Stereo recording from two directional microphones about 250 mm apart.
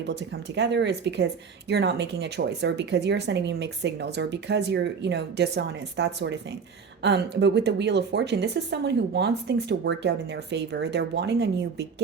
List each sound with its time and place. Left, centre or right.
0.1 s speech: right